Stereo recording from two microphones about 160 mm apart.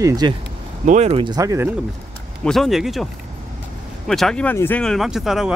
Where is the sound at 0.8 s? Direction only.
45° right (ahead or behind).